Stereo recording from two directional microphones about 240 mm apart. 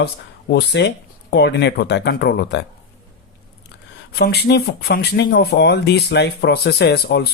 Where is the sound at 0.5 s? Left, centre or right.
Left.